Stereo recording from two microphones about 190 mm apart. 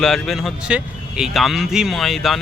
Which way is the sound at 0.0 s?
Centre (ahead or behind).